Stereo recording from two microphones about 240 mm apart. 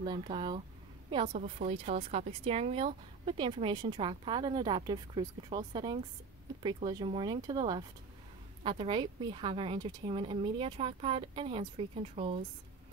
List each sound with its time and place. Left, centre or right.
0.0 s speech: centre
1.3 s speech: right